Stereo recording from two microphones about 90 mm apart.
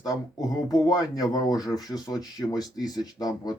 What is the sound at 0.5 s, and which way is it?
Speech, 45° left (ahead or behind).